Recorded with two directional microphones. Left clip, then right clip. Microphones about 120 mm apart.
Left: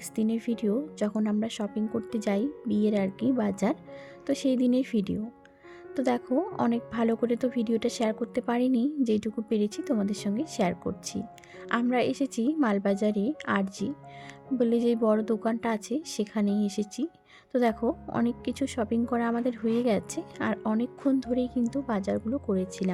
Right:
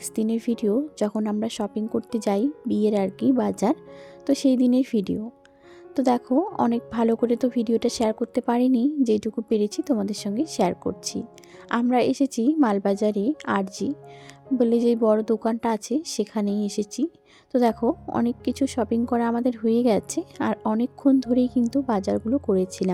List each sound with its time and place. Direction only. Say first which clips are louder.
0.2 s a woman's voice: right 5 dB; 35° right (ahead or behind)